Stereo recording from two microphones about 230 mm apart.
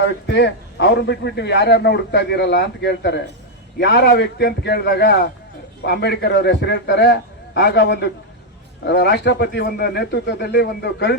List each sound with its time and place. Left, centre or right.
0.0 s a man's voice: left